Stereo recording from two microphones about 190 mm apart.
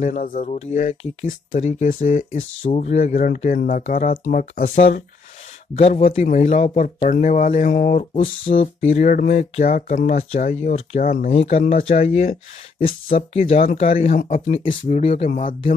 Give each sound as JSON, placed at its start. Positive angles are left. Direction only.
{"t": 0.0, "sound": "speech", "side_deg": 45}